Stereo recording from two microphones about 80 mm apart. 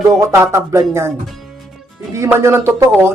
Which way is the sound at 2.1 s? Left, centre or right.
Right.